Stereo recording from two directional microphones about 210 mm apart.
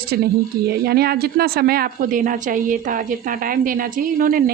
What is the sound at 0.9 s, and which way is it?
A woman's voice, 45° right (ahead or behind).